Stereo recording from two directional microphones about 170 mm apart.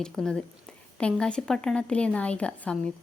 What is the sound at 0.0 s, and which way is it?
Speech, 5° left (ahead or behind).